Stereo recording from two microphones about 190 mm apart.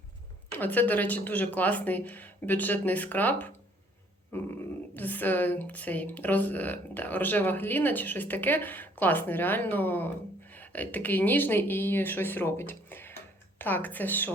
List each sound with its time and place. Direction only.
0.5 s a woman's voice: 10° left (ahead or behind)